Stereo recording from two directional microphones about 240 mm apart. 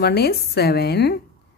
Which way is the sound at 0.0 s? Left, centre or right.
Left.